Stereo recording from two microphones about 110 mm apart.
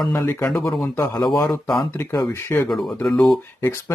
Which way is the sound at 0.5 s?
35° left (ahead or behind).